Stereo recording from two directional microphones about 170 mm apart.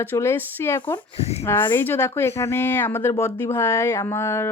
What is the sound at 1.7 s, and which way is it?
Speech, 15° left (ahead or behind).